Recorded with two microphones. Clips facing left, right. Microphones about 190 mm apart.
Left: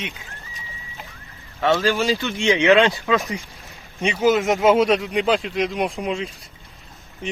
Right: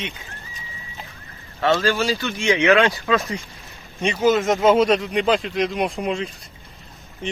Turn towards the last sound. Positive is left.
turn(degrees=0)  # may be behind; listen again after turning